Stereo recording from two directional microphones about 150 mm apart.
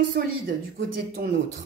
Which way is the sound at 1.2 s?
90° right.